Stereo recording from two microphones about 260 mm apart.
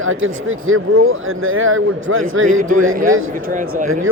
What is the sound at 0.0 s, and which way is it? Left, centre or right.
Speech, right.